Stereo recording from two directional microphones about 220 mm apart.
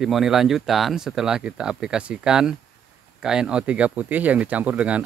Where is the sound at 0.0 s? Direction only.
Centre (ahead or behind).